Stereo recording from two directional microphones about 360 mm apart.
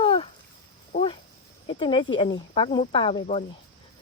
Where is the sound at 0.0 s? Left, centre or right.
Centre.